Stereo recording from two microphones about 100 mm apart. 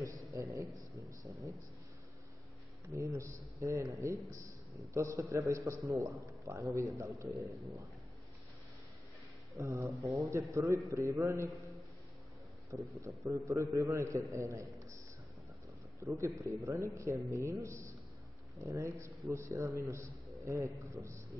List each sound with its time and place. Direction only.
0.0 s a man's voice: 30° right (ahead or behind)
2.9 s a man's voice: 30° right (ahead or behind)
9.5 s a man's voice: 30° right (ahead or behind)
13.0 s a man's voice: 30° right (ahead or behind)
16.0 s a man's voice: 30° right (ahead or behind)